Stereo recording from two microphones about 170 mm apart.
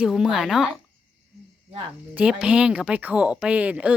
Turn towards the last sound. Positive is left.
turn(degrees=-5)  # may be behind; listen again after turning